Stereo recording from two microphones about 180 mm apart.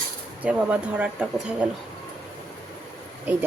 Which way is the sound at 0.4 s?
5° right (ahead or behind).